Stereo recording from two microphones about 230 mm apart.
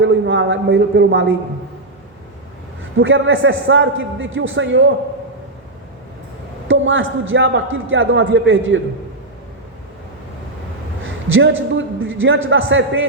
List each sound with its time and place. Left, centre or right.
0.0 s a man's voice: right
3.0 s a man's voice: right
6.7 s a man's voice: right
11.0 s a sound: right
11.9 s a man's voice: right